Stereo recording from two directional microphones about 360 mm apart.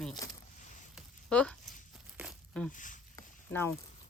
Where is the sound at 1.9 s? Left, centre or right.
Centre.